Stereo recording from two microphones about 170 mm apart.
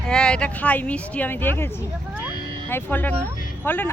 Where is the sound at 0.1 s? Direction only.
5° left (ahead or behind).